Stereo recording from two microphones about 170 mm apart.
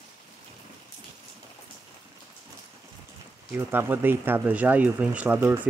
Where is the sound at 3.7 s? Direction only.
10° right (ahead or behind).